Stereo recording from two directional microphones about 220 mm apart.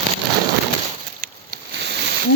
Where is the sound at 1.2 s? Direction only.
45° right (ahead or behind).